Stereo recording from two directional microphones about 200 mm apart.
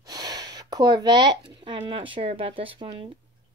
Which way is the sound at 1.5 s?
25° right (ahead or behind).